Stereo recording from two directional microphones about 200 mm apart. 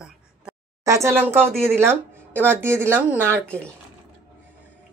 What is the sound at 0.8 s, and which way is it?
A woman's voice, 15° right (ahead or behind).